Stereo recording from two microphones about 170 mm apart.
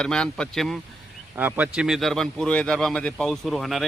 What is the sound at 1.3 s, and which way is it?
Speech, 10° right (ahead or behind).